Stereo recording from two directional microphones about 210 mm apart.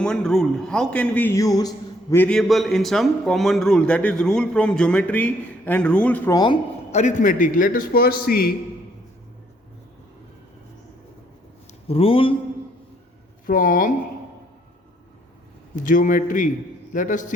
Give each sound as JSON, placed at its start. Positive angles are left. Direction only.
{"t": 0.0, "sound": "a man's voice", "side_deg": 5}
{"t": 7.0, "sound": "a man's voice", "side_deg": 35}
{"t": 11.9, "sound": "speech", "side_deg": 25}
{"t": 13.4, "sound": "a man's voice", "side_deg": 40}
{"t": 15.7, "sound": "a man's voice", "side_deg": 40}